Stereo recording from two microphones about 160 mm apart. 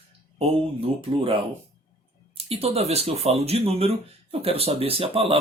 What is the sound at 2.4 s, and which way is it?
Speech, 40° right (ahead or behind).